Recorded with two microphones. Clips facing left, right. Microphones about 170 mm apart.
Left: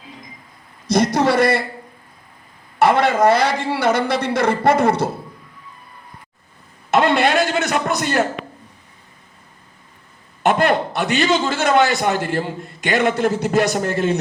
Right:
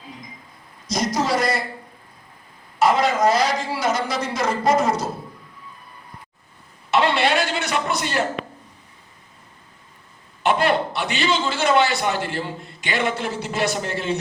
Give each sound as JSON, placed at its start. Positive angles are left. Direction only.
{"t": 0.9, "sound": "a man's voice", "side_deg": 60}
{"t": 2.7, "sound": "a man's voice", "side_deg": 60}
{"t": 6.9, "sound": "a sound", "side_deg": 50}
{"t": 7.4, "sound": "a man's voice", "side_deg": 45}
{"t": 10.4, "sound": "a man's voice", "side_deg": 50}